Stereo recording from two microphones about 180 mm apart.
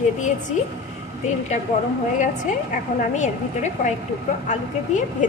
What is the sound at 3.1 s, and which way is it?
A woman's voice, 40° left (ahead or behind).